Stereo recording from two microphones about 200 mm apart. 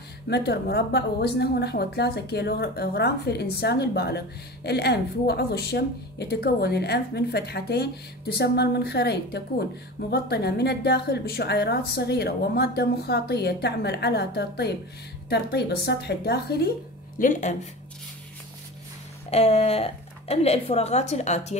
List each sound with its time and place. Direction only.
0.3 s a woman's voice: 55° left (ahead or behind)
17.2 s a woman's voice: 40° left (ahead or behind)
19.3 s a woman's voice: 30° left (ahead or behind)